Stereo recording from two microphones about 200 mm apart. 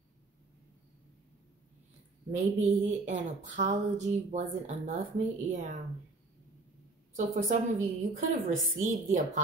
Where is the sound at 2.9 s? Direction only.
35° right (ahead or behind).